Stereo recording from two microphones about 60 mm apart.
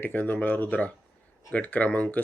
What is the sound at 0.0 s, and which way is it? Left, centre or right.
Speech, left.